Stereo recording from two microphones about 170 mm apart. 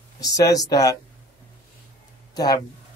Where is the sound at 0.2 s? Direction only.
20° left (ahead or behind).